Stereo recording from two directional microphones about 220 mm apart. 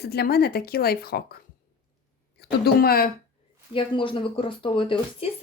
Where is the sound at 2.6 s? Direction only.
45° left (ahead or behind).